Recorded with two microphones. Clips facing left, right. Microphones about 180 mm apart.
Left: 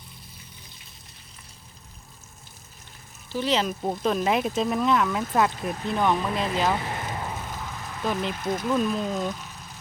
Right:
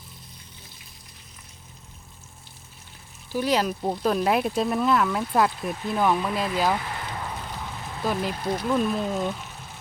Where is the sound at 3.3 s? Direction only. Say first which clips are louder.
Right 1 dB; 10° right (ahead or behind).